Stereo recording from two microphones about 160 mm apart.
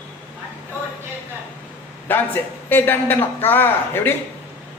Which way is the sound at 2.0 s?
10° left (ahead or behind).